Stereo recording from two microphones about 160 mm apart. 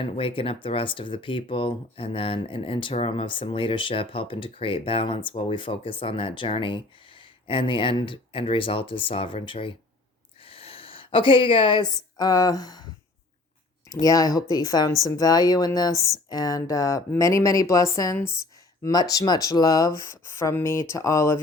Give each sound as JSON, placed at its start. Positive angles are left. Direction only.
{"t": 0.0, "sound": "speech", "side_deg": 35}
{"t": 10.4, "sound": "a sound", "side_deg": 35}
{"t": 11.9, "sound": "speech", "side_deg": 25}
{"t": 14.0, "sound": "speech", "side_deg": 20}